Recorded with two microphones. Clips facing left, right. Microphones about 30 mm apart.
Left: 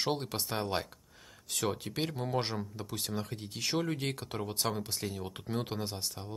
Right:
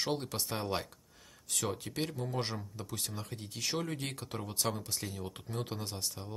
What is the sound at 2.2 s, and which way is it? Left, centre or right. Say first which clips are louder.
Speech: left 3 dB; left.